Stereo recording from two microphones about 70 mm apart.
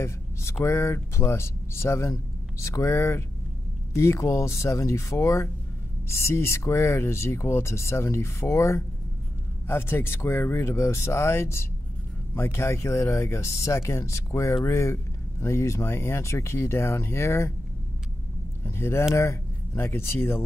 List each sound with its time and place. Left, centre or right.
0.0 s a sound: left
0.7 s speech: left
9.7 s speech: left
18.6 s speech: left